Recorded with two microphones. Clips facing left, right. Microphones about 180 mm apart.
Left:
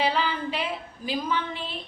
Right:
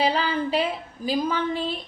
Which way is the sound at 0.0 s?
40° right (ahead or behind).